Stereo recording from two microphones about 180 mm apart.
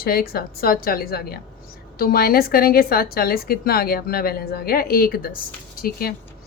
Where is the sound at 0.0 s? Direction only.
55° left (ahead or behind).